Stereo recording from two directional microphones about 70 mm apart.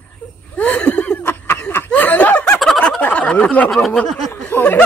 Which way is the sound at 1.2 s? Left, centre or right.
Left.